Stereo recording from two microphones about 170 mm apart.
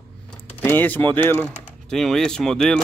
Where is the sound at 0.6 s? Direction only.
10° left (ahead or behind).